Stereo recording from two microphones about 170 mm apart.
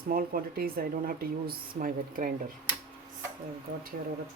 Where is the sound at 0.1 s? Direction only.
60° right (ahead or behind).